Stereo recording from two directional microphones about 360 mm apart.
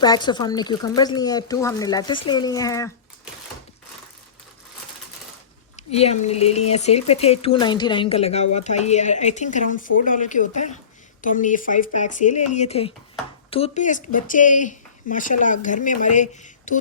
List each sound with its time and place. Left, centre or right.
0.0 s speech: centre
5.7 s speech: centre